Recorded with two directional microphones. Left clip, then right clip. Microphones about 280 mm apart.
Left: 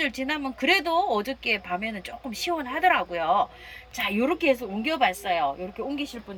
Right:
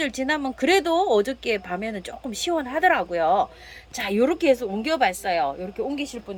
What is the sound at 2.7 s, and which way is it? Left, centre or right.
Speech, right.